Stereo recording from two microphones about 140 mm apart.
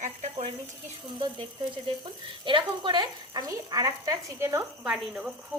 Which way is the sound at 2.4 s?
35° right (ahead or behind).